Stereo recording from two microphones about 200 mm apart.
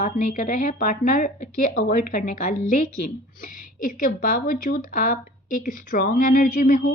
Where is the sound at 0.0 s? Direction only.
40° left (ahead or behind).